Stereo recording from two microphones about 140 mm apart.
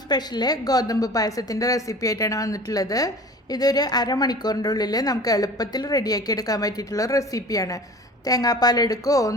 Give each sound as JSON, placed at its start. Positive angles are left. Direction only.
{"t": 0.1, "sound": "a woman's voice", "side_deg": 30}